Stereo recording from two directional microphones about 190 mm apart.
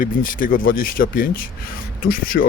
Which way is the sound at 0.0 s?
45° left (ahead or behind).